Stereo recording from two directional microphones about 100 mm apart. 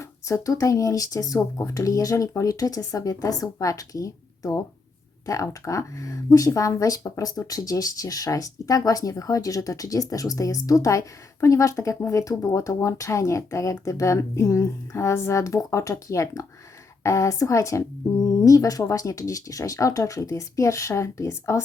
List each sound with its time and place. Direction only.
0.0 s speech: 30° left (ahead or behind)